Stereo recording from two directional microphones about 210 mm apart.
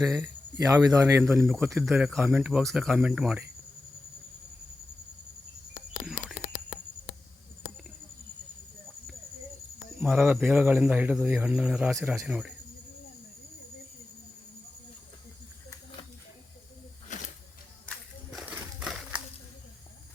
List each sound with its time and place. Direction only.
0.1 s a man's voice: 10° right (ahead or behind)
6.1 s frog: 5° right (ahead or behind)
10.0 s a man's voice: 5° right (ahead or behind)
17.1 s snake: 35° left (ahead or behind)
18.3 s crumpling: 5° right (ahead or behind)